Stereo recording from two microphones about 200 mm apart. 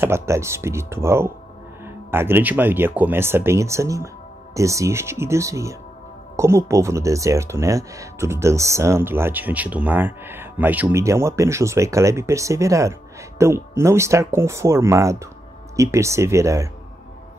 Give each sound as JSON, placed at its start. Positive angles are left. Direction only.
{"t": 0.0, "sound": "speech", "side_deg": -15}